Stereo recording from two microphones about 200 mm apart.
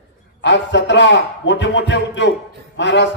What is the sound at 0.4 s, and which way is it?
A man's voice, 65° left (ahead or behind).